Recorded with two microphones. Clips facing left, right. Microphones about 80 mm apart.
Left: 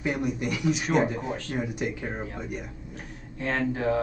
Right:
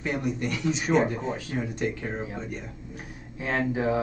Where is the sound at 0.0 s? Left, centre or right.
Centre.